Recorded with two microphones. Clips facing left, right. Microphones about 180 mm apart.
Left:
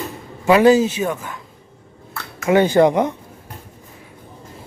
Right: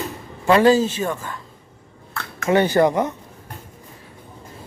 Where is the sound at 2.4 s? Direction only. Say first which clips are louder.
Left 3 dB; 10° left (ahead or behind).